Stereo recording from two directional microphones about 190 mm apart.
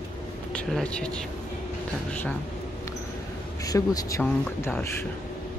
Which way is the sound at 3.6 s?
20° left (ahead or behind).